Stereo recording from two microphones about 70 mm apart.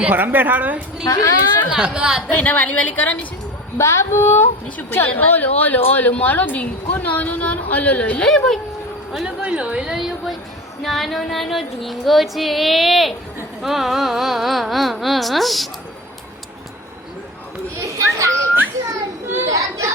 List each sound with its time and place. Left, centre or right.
0.0 s a woman's voice: right
1.0 s a woman's voice: left
1.7 s a woman's voice: centre
2.3 s speech: left
3.8 s a woman's voice: left
9.1 s a woman's voice: centre
10.8 s female singing: centre
17.7 s children playing: right
19.5 s speech: right